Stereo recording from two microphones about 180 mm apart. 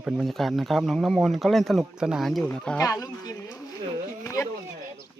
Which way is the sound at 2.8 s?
20° left (ahead or behind).